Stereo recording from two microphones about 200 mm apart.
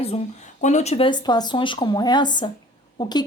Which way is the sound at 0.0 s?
35° left (ahead or behind).